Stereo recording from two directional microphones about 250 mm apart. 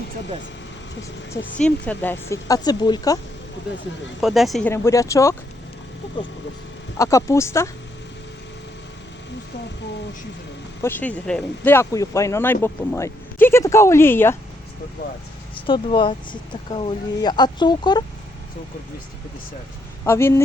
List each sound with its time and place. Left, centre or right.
1.5 s speech: centre
4.2 s speech: centre
7.0 s speech: centre
10.8 s speech: centre
15.6 s speech: centre
20.1 s speech: centre